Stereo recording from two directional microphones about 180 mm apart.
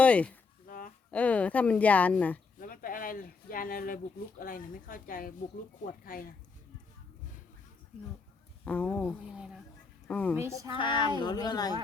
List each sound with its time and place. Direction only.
0.0 s speech: 5° left (ahead or behind)
0.7 s a sound: 50° left (ahead or behind)
1.1 s speech: 10° left (ahead or behind)
2.6 s speech: 50° left (ahead or behind)
8.6 s speech: 10° left (ahead or behind)
9.0 s speech: 5° right (ahead or behind)
10.1 s a woman's voice: 10° left (ahead or behind)
10.8 s speech: 25° left (ahead or behind)